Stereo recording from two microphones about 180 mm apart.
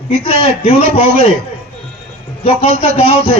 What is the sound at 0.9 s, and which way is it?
Speech, 35° left (ahead or behind).